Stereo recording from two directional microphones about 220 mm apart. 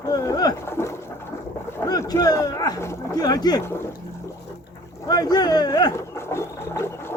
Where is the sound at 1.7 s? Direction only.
10° left (ahead or behind).